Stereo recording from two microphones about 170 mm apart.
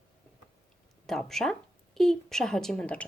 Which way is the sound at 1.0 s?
Centre (ahead or behind).